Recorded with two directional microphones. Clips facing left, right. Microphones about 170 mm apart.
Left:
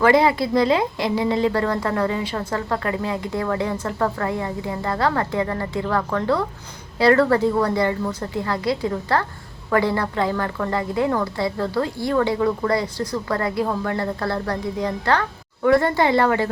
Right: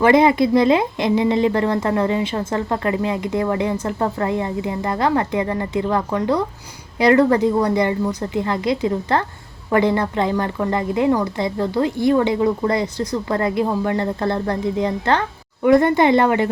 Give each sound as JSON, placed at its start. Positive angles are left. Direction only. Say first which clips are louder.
{"t": 0.0, "sound": "a woman's voice", "louder": "right 3 dB", "side_deg": -20}